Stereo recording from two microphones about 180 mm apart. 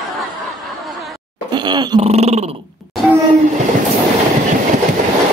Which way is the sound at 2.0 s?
35° right (ahead or behind).